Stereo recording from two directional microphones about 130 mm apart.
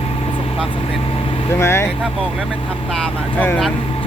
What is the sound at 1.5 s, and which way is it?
Speech, 20° left (ahead or behind).